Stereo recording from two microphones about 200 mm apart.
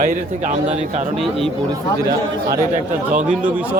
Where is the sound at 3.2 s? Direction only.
5° right (ahead or behind).